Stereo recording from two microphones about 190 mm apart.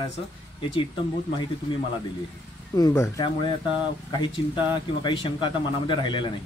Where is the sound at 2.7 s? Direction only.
15° left (ahead or behind).